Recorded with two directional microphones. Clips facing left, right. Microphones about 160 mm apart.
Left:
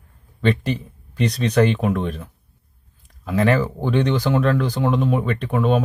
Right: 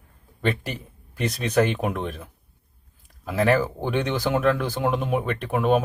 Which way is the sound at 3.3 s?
10° right (ahead or behind).